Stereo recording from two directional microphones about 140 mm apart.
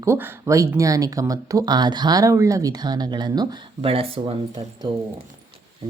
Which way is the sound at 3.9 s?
45° right (ahead or behind).